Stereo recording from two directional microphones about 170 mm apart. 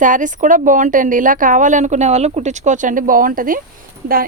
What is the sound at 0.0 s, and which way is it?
Speech, 50° right (ahead or behind).